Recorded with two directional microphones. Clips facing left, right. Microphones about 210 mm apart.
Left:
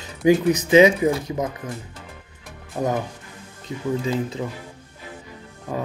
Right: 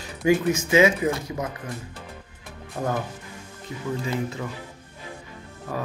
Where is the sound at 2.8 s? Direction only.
15° left (ahead or behind).